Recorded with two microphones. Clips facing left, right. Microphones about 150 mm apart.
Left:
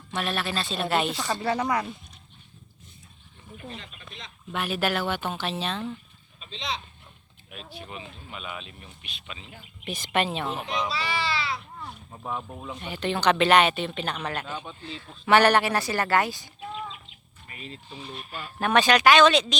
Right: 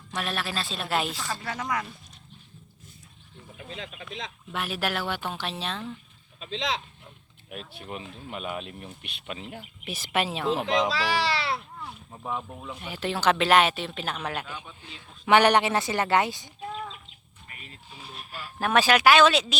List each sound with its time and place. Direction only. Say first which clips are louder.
0.1 s speech: left 2 dB; centre (ahead or behind)
1.3 s speech: left 6 dB; 30° left (ahead or behind)
3.8 s speech: right 7 dB; 90° right
4.5 s speech: left 3 dB; centre (ahead or behind)
6.4 s speech: right 4 dB; 90° right
7.7 s speech: left 1 dB; centre (ahead or behind)
8.3 s speech: right 6 dB; 50° right (ahead or behind)
9.8 s speech: left 2 dB; 5° right (ahead or behind)
10.7 s speech: right 4 dB; 90° right; by 11.6 s 65° right (ahead or behind)
11.8 s speech: even; centre (ahead or behind); by 16.5 s 20° right (ahead or behind)
16.7 s chicken: even; 40° right (ahead or behind)
18.0 s speech: left 2 dB; centre (ahead or behind)